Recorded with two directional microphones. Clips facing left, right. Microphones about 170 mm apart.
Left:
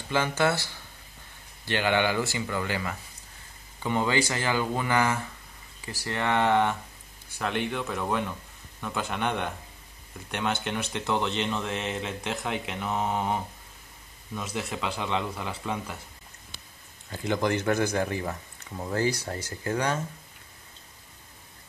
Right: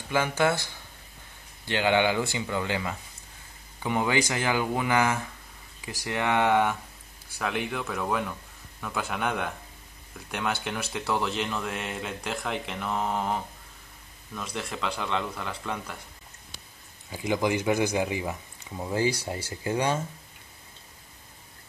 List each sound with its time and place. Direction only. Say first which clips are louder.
0.1 s speech: right 1 dB; 10° right (ahead or behind)
17.1 s speech: even; 10° right (ahead or behind)